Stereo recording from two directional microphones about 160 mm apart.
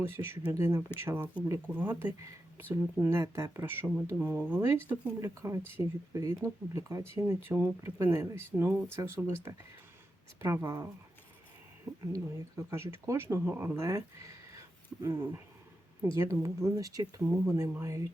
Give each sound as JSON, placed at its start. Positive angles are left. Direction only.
{"t": 0.0, "sound": "speech", "side_deg": -15}
{"t": 10.4, "sound": "speech", "side_deg": -20}
{"t": 12.1, "sound": "speech", "side_deg": -15}